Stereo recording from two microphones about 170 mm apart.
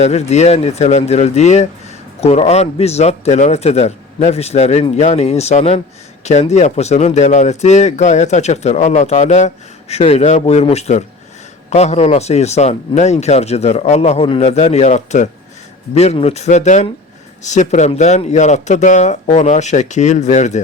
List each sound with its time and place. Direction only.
0.0 s speech: 40° left (ahead or behind)